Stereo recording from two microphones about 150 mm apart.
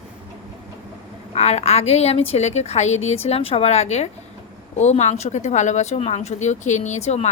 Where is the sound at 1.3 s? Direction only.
45° left (ahead or behind).